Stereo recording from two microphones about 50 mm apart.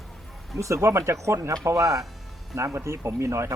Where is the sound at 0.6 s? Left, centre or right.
Right.